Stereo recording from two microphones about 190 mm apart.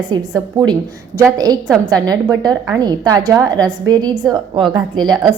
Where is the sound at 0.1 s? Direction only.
20° right (ahead or behind).